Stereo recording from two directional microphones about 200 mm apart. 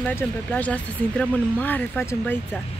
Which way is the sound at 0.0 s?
5° left (ahead or behind).